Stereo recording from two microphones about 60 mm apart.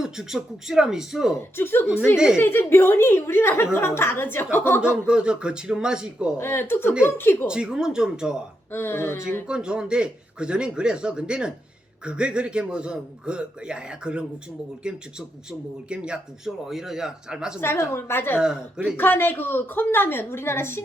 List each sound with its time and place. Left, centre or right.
0.0 s a man's voice: centre
1.4 s a woman's voice: left
2.1 s a man's voice: centre
2.4 s a woman's voice: left
4.8 s a man's voice: centre
6.4 s a woman's voice: left
7.4 s a man's voice: centre
8.7 s a woman's voice: left
9.5 s a man's voice: centre
16.6 s a man's voice: centre
17.6 s a woman's voice: left
18.3 s a man's voice: centre
18.9 s a woman's voice: left